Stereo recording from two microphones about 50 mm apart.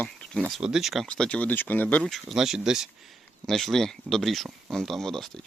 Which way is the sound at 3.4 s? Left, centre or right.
Centre.